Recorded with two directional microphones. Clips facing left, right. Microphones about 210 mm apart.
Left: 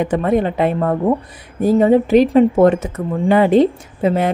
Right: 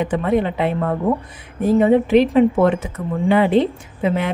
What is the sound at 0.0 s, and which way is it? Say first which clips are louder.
A woman's voice: left 2 dB; 45° left (ahead or behind).